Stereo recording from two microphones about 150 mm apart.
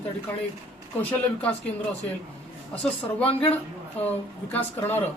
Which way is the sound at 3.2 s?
40° left (ahead or behind).